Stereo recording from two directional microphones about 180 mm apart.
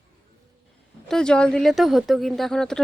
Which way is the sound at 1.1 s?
5° left (ahead or behind).